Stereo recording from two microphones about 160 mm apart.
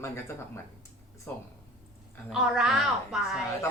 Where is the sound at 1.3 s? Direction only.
10° left (ahead or behind).